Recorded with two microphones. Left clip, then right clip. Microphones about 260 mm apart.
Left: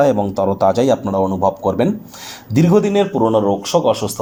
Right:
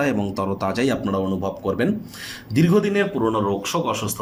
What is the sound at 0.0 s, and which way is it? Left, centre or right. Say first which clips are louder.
Speech: left 9 dB; centre.